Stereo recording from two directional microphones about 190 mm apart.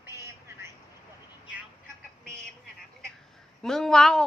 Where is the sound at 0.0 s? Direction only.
15° right (ahead or behind).